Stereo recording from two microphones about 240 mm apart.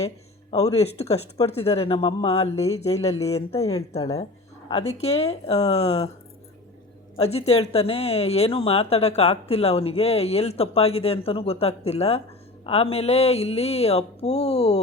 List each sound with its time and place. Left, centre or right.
0.5 s speech: left
3.6 s a woman's voice: centre
4.7 s speech: left
7.2 s speech: left